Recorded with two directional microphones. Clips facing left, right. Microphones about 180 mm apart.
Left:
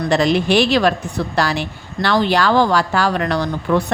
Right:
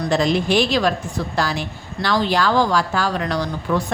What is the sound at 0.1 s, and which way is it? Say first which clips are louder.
A woman's voice: left 3 dB; 70° left (ahead or behind).